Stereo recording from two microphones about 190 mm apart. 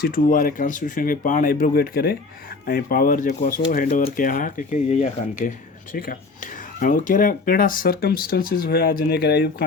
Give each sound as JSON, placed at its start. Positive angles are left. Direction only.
{"t": 0.0, "sound": "speech", "side_deg": 45}